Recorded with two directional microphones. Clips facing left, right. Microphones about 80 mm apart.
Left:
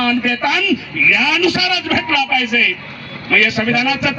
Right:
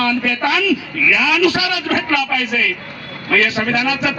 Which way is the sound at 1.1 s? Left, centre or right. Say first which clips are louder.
Right 1 dB; right.